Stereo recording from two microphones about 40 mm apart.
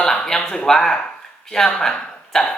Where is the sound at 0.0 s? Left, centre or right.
Centre.